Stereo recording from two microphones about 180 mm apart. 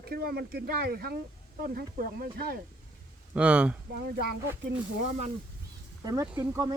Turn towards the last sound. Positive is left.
turn(degrees=-20)  # may be behind; listen again after turning